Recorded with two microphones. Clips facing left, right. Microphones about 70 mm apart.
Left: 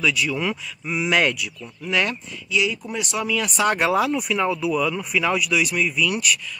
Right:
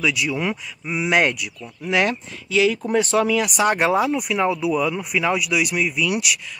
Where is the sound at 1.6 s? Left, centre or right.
Right.